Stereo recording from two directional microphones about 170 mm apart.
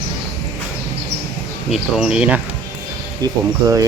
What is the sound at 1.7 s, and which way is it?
Speech, centre (ahead or behind).